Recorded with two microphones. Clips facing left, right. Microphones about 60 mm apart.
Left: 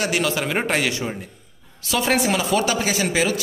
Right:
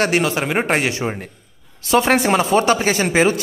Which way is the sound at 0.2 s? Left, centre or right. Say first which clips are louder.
Right 3 dB; right.